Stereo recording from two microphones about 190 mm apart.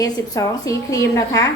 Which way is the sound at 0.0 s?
20° left (ahead or behind).